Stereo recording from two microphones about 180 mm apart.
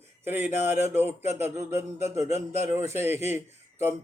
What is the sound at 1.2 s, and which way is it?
Speech, 35° left (ahead or behind).